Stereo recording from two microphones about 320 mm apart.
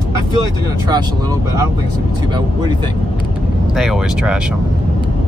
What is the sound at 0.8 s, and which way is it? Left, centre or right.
Speech, centre.